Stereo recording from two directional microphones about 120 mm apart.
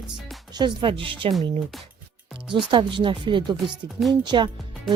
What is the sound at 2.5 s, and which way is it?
A woman's voice, 40° right (ahead or behind).